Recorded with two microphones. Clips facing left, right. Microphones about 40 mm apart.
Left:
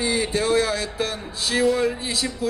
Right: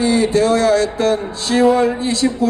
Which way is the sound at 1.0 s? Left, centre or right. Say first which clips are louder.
Right 10 dB; centre.